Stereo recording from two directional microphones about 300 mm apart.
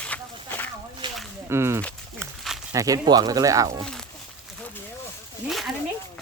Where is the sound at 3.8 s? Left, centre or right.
Centre.